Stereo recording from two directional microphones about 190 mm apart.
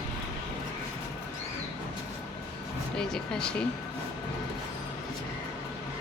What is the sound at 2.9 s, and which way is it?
Speech, 5° left (ahead or behind).